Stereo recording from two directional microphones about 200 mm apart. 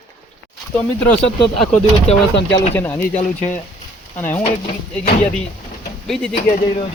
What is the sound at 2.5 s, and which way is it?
Speech, 10° left (ahead or behind).